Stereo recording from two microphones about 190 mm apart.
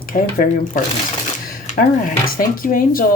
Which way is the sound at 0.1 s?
45° left (ahead or behind).